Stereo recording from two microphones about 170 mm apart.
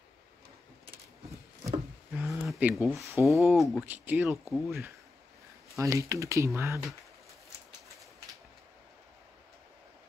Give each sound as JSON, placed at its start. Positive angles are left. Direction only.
{"t": 2.1, "sound": "a sound", "side_deg": -5}
{"t": 2.9, "sound": "speech", "side_deg": -15}
{"t": 3.3, "sound": "speech", "side_deg": 0}
{"t": 3.8, "sound": "speech", "side_deg": -10}
{"t": 5.8, "sound": "speech", "side_deg": -20}